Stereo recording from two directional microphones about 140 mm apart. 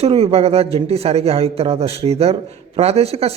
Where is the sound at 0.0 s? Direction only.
45° right (ahead or behind).